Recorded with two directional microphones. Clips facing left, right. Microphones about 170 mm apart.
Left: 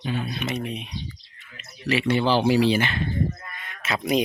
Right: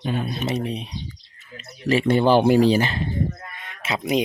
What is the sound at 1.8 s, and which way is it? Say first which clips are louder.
Speech: right 4 dB; 45° right (ahead or behind).